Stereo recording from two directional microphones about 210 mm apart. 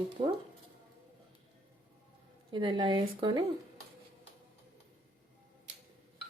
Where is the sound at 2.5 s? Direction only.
20° right (ahead or behind).